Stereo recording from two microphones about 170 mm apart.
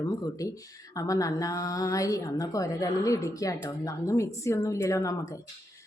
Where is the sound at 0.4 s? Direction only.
20° left (ahead or behind).